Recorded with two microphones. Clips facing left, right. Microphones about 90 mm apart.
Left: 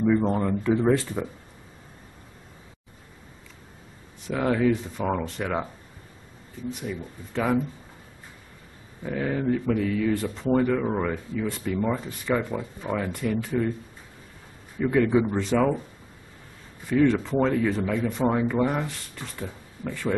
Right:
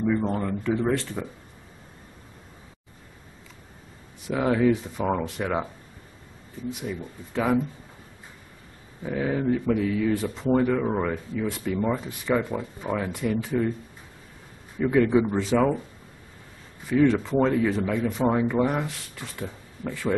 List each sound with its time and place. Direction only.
0.0 s speech: 10° left (ahead or behind)
4.3 s speech: 5° right (ahead or behind)
6.7 s speech: 5° right (ahead or behind)
9.0 s speech: 5° right (ahead or behind)
14.9 s speech: 5° right (ahead or behind)
17.0 s speech: centre (ahead or behind)